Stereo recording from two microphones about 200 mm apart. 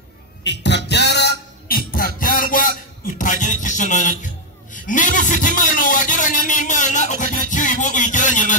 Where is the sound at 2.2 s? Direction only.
45° left (ahead or behind).